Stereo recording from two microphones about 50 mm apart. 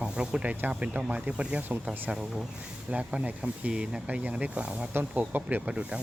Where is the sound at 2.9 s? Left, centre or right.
Right.